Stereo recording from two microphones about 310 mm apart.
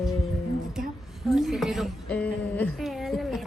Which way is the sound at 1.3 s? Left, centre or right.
Centre.